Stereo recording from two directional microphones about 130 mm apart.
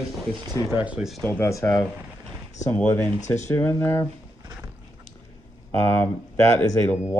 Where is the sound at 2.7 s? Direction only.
10° left (ahead or behind).